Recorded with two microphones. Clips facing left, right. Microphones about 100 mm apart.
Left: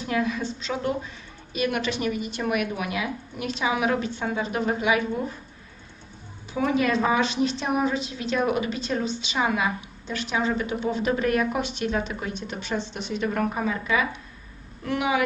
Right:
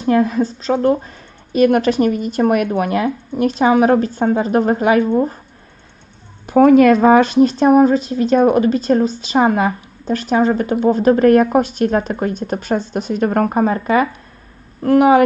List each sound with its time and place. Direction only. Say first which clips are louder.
0.0 s a woman's voice: right 11 dB; 40° right (ahead or behind)
6.5 s a woman's voice: right 14 dB; 60° right (ahead or behind)